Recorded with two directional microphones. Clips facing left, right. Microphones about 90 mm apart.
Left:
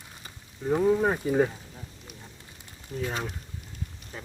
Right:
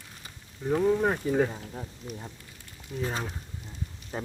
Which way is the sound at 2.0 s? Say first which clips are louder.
Right 9 dB; 15° right (ahead or behind).